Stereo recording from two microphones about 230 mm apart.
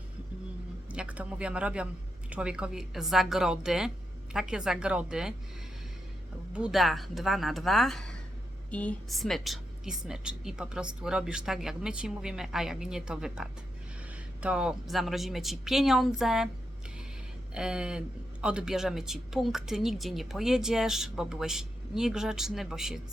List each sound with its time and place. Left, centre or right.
0.9 s a woman's voice: centre
6.5 s a woman's voice: centre
17.5 s a woman's voice: centre